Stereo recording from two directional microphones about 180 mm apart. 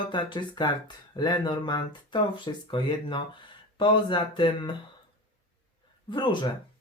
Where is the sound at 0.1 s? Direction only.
25° left (ahead or behind).